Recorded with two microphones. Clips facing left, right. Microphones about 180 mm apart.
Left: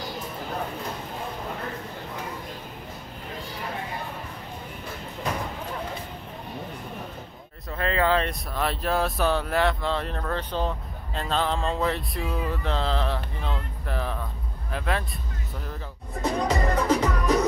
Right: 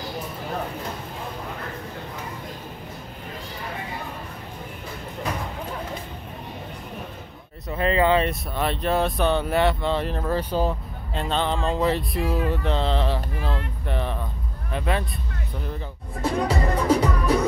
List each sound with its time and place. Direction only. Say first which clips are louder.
7.7 s speech: right 4 dB; 5° right (ahead or behind)
16.2 s music: right 1 dB; 10° right (ahead or behind)